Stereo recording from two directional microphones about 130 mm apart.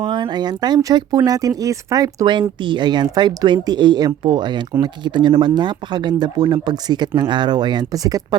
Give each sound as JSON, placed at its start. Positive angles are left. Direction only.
{"t": 0.0, "sound": "speech", "side_deg": -35}